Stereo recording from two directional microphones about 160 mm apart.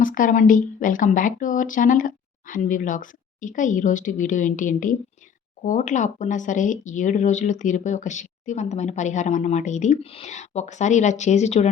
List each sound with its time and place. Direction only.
0.0 s speech: 55° left (ahead or behind)